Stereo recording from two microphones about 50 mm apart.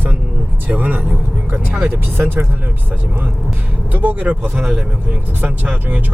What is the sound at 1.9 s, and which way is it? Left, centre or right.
Speech, right.